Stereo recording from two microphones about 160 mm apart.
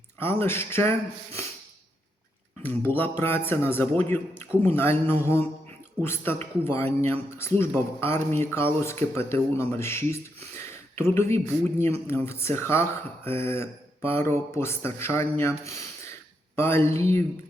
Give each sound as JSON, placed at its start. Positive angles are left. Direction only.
{"t": 0.2, "sound": "a man's voice", "side_deg": 15}
{"t": 2.6, "sound": "a man's voice", "side_deg": 10}